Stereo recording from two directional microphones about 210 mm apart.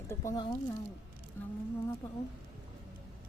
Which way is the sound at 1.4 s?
10° left (ahead or behind).